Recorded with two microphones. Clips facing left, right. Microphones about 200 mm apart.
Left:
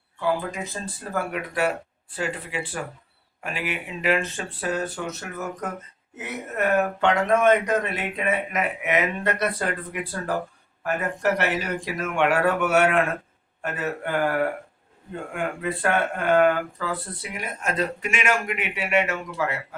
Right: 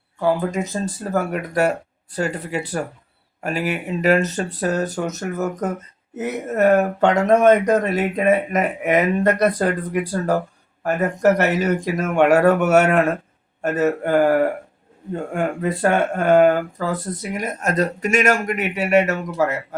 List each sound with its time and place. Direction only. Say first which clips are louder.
0.2 s speech: right 6 dB; 45° right (ahead or behind)